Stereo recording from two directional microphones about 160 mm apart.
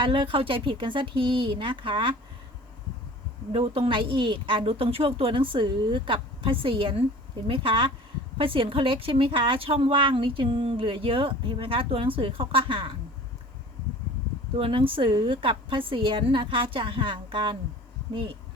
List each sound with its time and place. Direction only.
0.0 s speech: 30° right (ahead or behind)
3.5 s speech: 35° right (ahead or behind)
14.5 s speech: 35° right (ahead or behind)